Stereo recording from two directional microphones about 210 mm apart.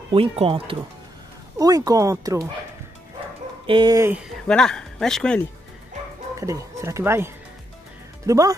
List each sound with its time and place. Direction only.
0.1 s speech: 25° right (ahead or behind)
3.6 s speech: 20° right (ahead or behind)
4.5 s speech: 5° left (ahead or behind)
6.4 s speech: 15° right (ahead or behind)